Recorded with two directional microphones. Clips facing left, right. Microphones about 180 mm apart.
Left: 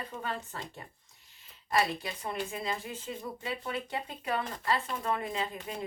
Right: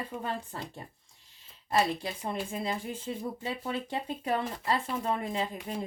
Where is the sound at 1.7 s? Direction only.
30° right (ahead or behind).